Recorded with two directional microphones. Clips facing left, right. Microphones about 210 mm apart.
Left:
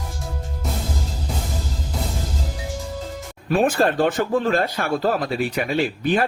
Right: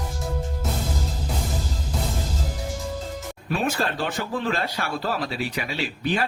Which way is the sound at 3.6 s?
50° left (ahead or behind).